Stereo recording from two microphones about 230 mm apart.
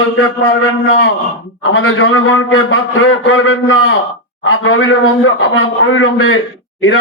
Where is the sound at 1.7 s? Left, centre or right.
Left.